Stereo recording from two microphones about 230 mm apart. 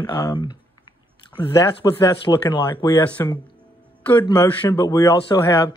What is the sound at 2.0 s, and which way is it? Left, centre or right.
Speech, centre.